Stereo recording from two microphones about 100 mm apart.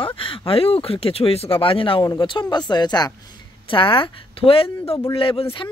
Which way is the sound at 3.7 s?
55° left (ahead or behind).